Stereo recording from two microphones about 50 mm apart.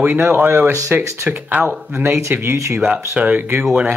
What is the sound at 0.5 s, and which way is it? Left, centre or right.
Speech, right.